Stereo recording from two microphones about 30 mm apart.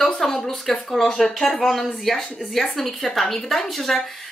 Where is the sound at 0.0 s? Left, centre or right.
Centre.